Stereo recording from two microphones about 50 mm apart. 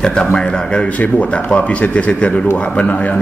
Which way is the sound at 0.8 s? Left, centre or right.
Left.